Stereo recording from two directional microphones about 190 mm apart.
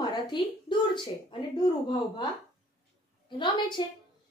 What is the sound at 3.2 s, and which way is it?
Speech, 25° left (ahead or behind).